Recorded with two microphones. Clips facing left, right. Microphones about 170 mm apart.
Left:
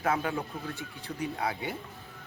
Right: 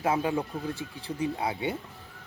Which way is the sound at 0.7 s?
35° right (ahead or behind).